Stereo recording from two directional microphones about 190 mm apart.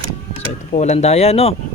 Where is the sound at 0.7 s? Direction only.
35° left (ahead or behind).